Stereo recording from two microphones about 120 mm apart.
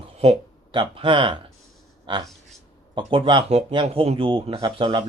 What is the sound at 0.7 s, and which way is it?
Speech, 45° right (ahead or behind).